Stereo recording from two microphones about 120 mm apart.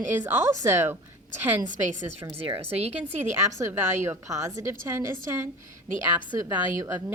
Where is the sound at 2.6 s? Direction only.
60° right (ahead or behind).